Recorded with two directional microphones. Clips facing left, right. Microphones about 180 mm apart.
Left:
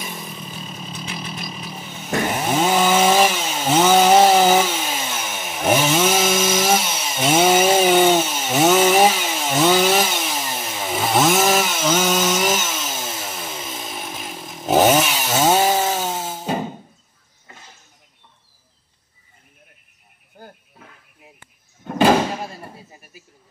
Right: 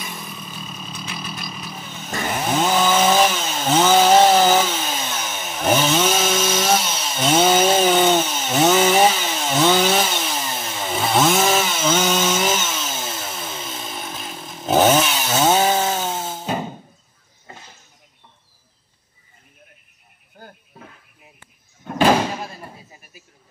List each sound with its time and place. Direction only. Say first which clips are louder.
0.0 s vehicle: left 1 dB; 15° left (ahead or behind)
0.7 s a sound: left 2 dB; 15° left (ahead or behind)
2.4 s chainsaw: even; 5° left (ahead or behind)